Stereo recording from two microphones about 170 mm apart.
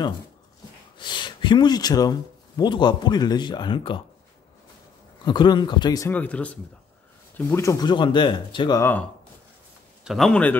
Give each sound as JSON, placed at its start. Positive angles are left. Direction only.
{"t": 0.9, "sound": "speech", "side_deg": 25}
{"t": 5.2, "sound": "speech", "side_deg": 25}
{"t": 10.0, "sound": "speech", "side_deg": 0}